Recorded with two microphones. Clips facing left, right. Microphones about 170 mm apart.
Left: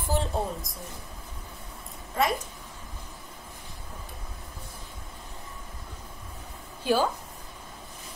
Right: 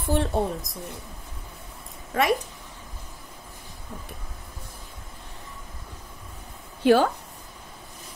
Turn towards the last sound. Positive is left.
turn(degrees=-70)  # may be behind; listen again after turning